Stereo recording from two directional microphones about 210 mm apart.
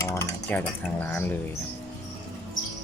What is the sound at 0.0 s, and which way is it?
Cutlery, 15° left (ahead or behind).